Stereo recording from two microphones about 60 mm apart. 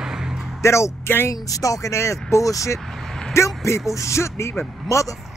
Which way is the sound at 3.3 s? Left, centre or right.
Left.